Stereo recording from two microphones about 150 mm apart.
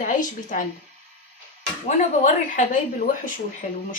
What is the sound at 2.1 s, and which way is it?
Speech, 60° left (ahead or behind).